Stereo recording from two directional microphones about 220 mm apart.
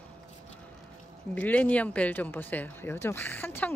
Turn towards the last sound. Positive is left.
turn(degrees=10)  # may be behind; listen again after turning